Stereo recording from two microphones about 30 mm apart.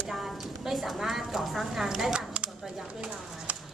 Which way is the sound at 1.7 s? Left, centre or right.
Centre.